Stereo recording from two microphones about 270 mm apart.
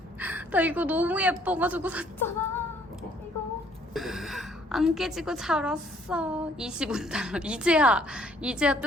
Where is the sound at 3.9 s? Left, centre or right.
Centre.